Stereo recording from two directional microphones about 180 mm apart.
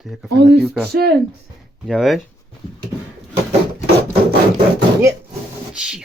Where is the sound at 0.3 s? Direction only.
65° right (ahead or behind).